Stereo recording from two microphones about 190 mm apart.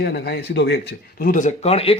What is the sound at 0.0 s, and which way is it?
Speech, 60° left (ahead or behind).